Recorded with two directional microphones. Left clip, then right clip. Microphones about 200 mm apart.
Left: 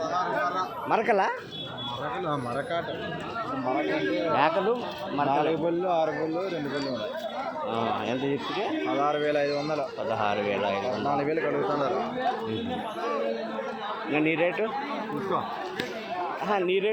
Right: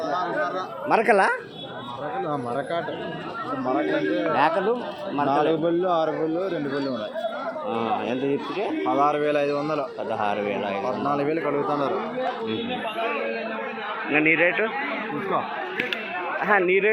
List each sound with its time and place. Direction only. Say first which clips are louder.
0.1 s chatter: right 3 dB; 30° right (ahead or behind)
0.9 s speech: right 6 dB; 15° right (ahead or behind)
4.3 s speech: right 2 dB; 5° right (ahead or behind)
5.3 s a man's voice: right 5 dB; 35° right (ahead or behind)
7.7 s speech: right 4 dB; 5° right (ahead or behind)
9.0 s a man's voice: right 4 dB; 40° right (ahead or behind)
10.1 s speech: right 1 dB; centre (ahead or behind)
10.8 s a man's voice: right 3 dB; 45° right (ahead or behind)
14.1 s a man's voice: right 6 dB; 15° left (ahead or behind)
16.5 s a man's voice: right 6 dB; 5° left (ahead or behind)